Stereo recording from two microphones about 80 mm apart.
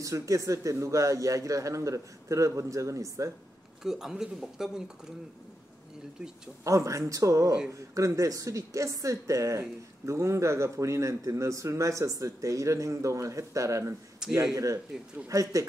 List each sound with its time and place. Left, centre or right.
0.0 s speech: right
3.8 s speech: centre
6.6 s speech: right